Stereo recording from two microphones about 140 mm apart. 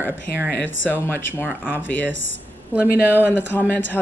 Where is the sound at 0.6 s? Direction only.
15° left (ahead or behind).